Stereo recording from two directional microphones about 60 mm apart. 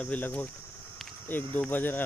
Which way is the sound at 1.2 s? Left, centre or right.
Left.